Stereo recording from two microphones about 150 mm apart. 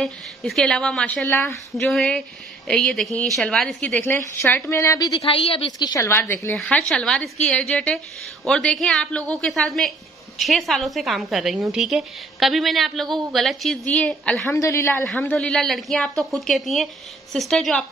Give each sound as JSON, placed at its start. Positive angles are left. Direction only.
{"t": 0.0, "sound": "a woman's voice", "side_deg": 0}
{"t": 1.8, "sound": "a woman's voice", "side_deg": 0}
{"t": 5.2, "sound": "a woman's voice", "side_deg": 40}
{"t": 5.8, "sound": "speech", "side_deg": 25}
{"t": 6.5, "sound": "a woman's voice", "side_deg": 5}
{"t": 14.5, "sound": "a woman's voice", "side_deg": 20}